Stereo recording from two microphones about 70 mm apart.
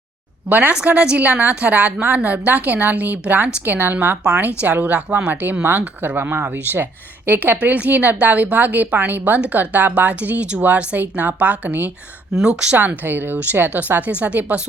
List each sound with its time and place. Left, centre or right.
0.4 s a woman's voice: right
12.4 s speech: centre
12.7 s a woman's voice: right